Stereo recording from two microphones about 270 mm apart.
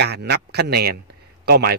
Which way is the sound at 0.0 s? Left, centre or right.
Right.